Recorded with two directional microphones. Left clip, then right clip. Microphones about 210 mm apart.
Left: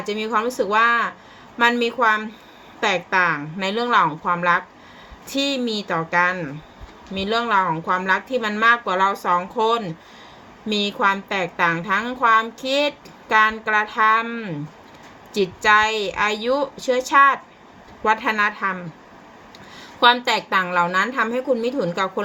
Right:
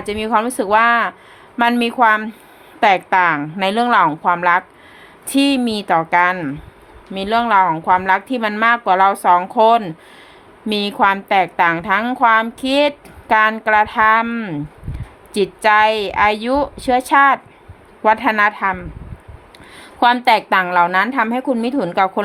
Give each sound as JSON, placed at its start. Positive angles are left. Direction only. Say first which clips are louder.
{"t": 0.0, "sound": "a woman's voice", "louder": "right 4 dB", "side_deg": -55}